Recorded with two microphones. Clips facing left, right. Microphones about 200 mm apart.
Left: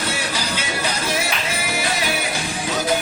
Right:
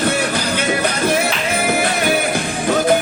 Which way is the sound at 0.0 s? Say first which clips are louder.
Right 7 dB; 55° right (ahead or behind).